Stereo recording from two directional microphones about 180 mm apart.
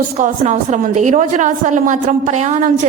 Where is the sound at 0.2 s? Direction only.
40° right (ahead or behind).